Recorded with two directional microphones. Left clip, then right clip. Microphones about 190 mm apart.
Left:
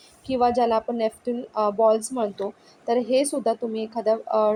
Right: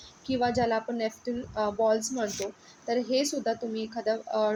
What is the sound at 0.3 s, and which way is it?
A woman's voice, 10° left (ahead or behind).